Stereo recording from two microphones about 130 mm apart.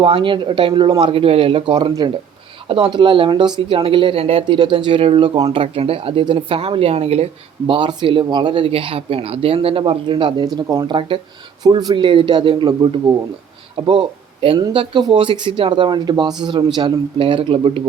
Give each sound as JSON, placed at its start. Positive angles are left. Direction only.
{"t": 0.0, "sound": "speech", "side_deg": -40}
{"t": 7.7, "sound": "speech", "side_deg": -40}